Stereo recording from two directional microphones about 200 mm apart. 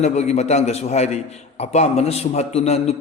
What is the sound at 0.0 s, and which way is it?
A man's voice, 35° left (ahead or behind).